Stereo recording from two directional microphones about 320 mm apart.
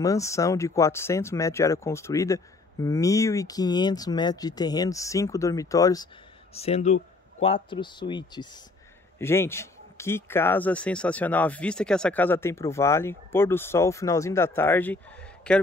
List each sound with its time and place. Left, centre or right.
0.0 s speech: centre